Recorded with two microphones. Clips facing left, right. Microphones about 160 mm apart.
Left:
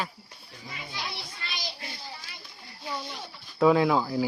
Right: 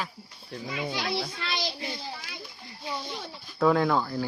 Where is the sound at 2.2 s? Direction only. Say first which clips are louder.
Right 5 dB; 90° right.